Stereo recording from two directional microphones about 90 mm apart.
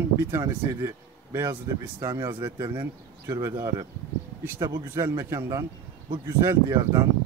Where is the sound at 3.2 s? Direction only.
30° right (ahead or behind).